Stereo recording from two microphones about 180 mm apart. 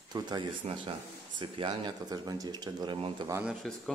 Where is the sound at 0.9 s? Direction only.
30° right (ahead or behind).